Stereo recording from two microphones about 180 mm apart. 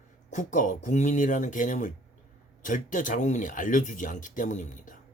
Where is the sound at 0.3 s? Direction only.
45° left (ahead or behind).